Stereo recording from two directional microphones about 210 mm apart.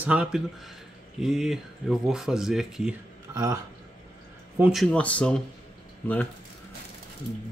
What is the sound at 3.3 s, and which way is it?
Speech, 15° right (ahead or behind).